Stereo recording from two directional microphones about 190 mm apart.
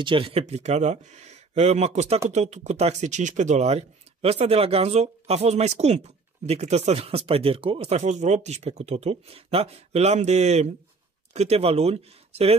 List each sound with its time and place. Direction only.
0.0 s speech: 30° right (ahead or behind)